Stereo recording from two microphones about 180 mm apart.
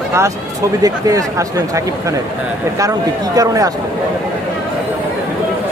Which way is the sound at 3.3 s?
20° right (ahead or behind).